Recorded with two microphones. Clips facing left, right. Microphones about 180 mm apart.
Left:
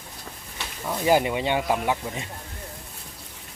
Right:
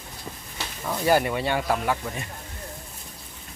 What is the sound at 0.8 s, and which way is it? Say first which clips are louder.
Speech: left 1 dB; 10° left (ahead or behind).